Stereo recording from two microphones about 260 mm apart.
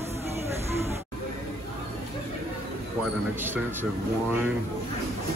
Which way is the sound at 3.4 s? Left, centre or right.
Centre.